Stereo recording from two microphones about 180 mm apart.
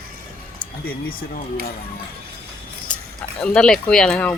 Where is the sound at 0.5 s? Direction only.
55° left (ahead or behind).